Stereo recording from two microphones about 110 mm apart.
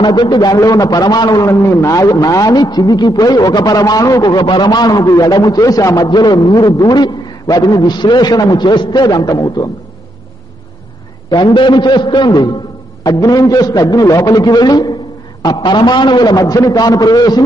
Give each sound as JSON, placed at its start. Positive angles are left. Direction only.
{"t": 0.0, "sound": "a man's voice", "side_deg": 40}
{"t": 11.2, "sound": "a man's voice", "side_deg": 40}